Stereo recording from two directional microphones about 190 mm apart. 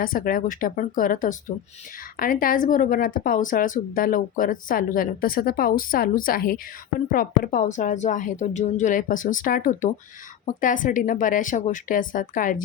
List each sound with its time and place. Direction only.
0.0 s speech: 50° left (ahead or behind)